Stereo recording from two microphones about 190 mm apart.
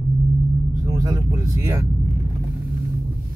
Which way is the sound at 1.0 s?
15° right (ahead or behind).